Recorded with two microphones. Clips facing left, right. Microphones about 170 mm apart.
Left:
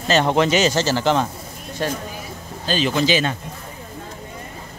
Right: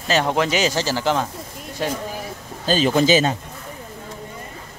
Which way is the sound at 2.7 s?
40° right (ahead or behind).